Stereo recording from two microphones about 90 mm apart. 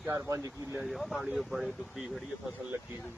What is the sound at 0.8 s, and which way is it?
Speech, centre (ahead or behind).